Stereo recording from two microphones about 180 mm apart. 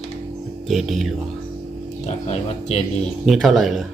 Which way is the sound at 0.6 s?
Centre (ahead or behind).